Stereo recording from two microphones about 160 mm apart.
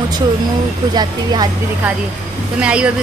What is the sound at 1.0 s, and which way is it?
Speech, 25° right (ahead or behind).